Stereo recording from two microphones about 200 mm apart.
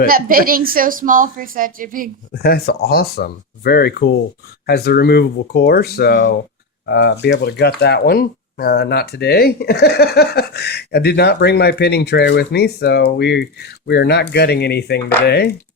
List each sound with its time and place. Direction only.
0.1 s a woman's voice: 45° right (ahead or behind)
2.3 s speech: 50° left (ahead or behind)